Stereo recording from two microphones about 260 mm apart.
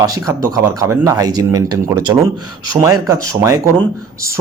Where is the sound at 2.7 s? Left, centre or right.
Centre.